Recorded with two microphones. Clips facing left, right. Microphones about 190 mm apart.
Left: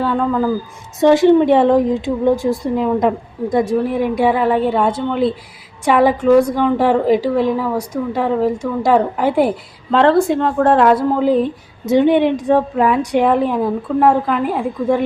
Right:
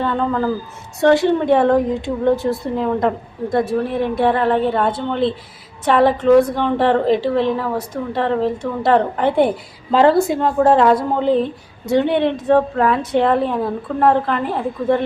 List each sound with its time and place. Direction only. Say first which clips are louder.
0.0 s speech: left 2 dB; 5° left (ahead or behind)
0.9 s speech: left 4 dB; 20° left (ahead or behind)